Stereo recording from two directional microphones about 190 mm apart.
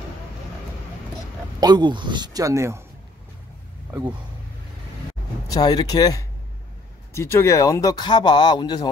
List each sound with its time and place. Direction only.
1.6 s speech: 20° right (ahead or behind)
5.5 s speech: 20° left (ahead or behind)